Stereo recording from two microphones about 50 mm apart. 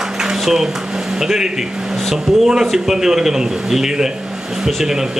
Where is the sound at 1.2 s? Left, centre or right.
Centre.